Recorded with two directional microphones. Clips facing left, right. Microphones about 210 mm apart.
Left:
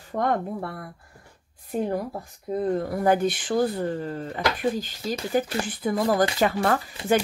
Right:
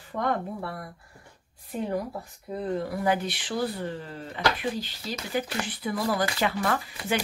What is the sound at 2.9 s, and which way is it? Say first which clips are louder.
Speech: left 5 dB; 45° left (ahead or behind).